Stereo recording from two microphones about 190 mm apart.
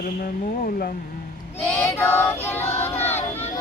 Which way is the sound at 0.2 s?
50° left (ahead or behind).